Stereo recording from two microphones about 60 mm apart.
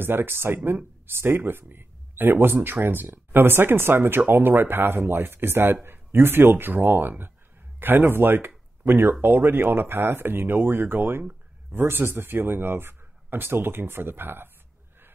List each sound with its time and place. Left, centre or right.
0.0 s speech: right